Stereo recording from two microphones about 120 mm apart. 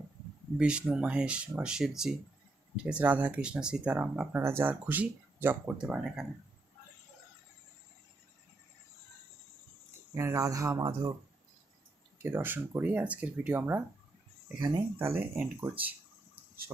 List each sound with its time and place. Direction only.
0.6 s speech: 10° right (ahead or behind)
10.2 s speech: 25° right (ahead or behind)
12.2 s speech: 20° right (ahead or behind)
14.9 s speech: 15° right (ahead or behind)